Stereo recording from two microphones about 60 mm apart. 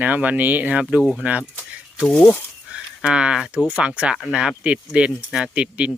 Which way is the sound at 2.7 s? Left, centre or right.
Centre.